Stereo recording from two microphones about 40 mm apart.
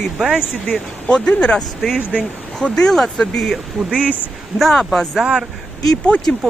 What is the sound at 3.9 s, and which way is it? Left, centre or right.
Speech, right.